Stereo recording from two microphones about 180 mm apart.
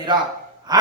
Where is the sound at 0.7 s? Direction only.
20° right (ahead or behind).